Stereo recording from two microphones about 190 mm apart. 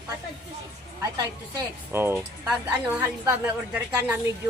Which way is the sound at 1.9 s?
10° right (ahead or behind).